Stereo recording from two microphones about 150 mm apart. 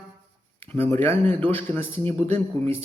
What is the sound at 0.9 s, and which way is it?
A man's voice, 15° left (ahead or behind).